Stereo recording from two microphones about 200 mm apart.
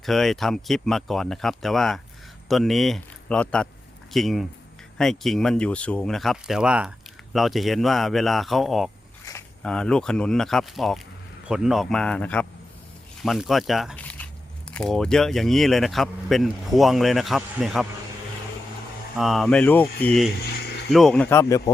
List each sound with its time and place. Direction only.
0.0 s a man's voice: centre (ahead or behind)
19.1 s a man's voice: centre (ahead or behind)
20.5 s a sound: 55° left (ahead or behind)
20.9 s speech: 5° left (ahead or behind)